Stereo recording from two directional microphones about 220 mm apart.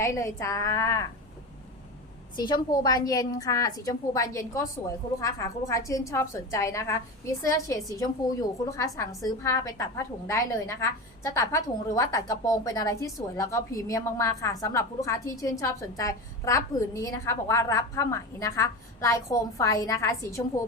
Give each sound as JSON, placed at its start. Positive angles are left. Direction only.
{"t": 0.0, "sound": "a woman's voice", "side_deg": 15}
{"t": 2.3, "sound": "a woman's voice", "side_deg": 20}